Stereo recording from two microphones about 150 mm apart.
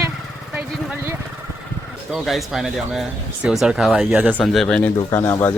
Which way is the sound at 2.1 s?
Centre (ahead or behind).